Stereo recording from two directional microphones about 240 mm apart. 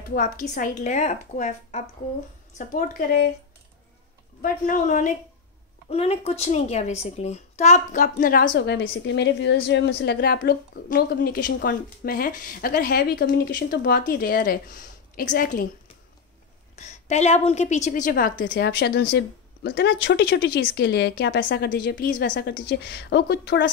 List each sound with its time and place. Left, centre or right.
0.1 s a woman's voice: left
4.4 s a woman's voice: left
8.5 s a woman's voice: left
16.7 s a child's voice: left
18.5 s speech: left